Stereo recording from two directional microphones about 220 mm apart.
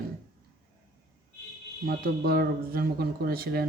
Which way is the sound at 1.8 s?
45° right (ahead or behind).